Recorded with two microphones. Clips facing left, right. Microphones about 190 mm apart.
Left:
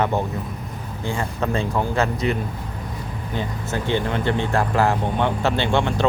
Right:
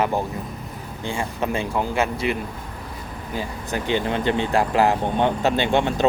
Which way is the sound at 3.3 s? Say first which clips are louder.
Left 1 dB; 10° right (ahead or behind).